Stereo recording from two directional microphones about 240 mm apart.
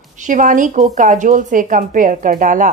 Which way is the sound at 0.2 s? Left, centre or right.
Right.